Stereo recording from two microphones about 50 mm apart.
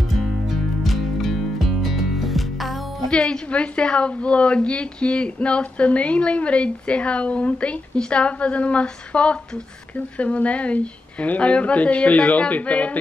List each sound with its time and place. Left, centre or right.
0.8 s music: centre
3.1 s a woman's voice: centre